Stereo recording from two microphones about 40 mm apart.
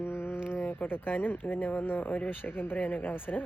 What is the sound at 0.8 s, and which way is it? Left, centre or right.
Speech, left.